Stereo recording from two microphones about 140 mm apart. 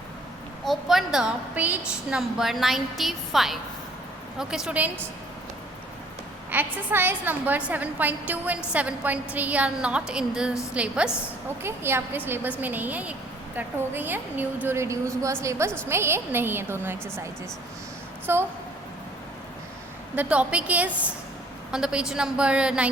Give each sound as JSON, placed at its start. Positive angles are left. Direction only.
{"t": 0.6, "sound": "a woman's voice", "side_deg": 0}
{"t": 6.5, "sound": "a woman's voice", "side_deg": -15}
{"t": 18.3, "sound": "a woman's voice", "side_deg": -15}
{"t": 20.1, "sound": "a woman's voice", "side_deg": -10}